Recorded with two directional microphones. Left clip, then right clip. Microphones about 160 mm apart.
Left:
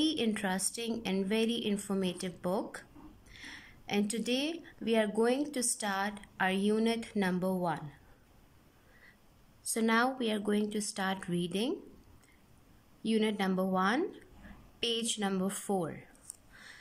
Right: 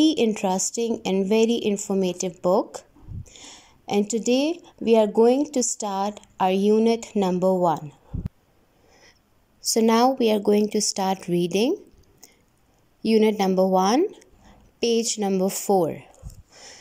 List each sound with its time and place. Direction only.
0.0 s speech: 30° right (ahead or behind)
9.8 s speech: 35° right (ahead or behind)
13.0 s speech: 35° right (ahead or behind)